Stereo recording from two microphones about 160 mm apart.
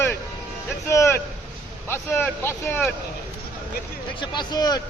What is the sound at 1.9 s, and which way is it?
Speech, 15° left (ahead or behind).